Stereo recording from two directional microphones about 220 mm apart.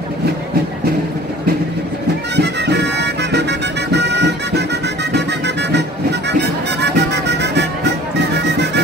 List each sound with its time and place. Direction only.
2.3 s music: 50° right (ahead or behind)